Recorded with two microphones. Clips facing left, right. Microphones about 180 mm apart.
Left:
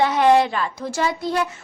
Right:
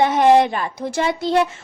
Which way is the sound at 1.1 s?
90° right.